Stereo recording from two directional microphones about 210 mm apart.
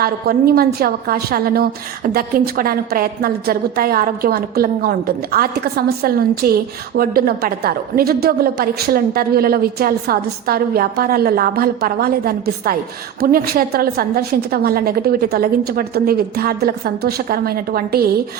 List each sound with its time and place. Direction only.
0.0 s a woman's voice: 45° right (ahead or behind)